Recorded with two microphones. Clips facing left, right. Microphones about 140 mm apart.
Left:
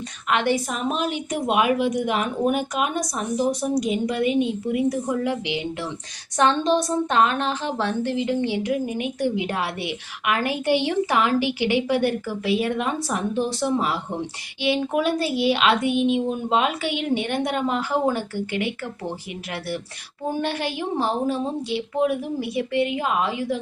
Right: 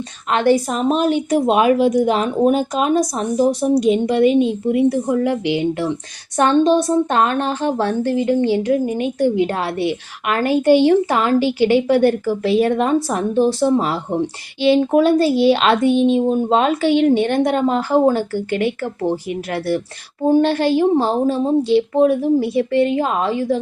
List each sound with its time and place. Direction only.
0.3 s a woman's voice: 40° right (ahead or behind)
6.3 s a woman's voice: 45° right (ahead or behind)
10.4 s a woman's voice: 15° left (ahead or behind)
11.1 s a woman's voice: 35° right (ahead or behind)
11.3 s a woman's voice: 15° left (ahead or behind)
11.7 s a woman's voice: 45° right (ahead or behind)